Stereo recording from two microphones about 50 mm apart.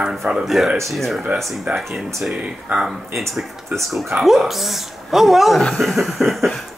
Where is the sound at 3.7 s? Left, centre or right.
Right.